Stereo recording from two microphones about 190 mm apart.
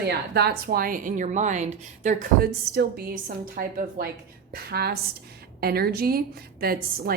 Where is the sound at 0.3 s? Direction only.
55° right (ahead or behind); by 2.5 s 40° right (ahead or behind).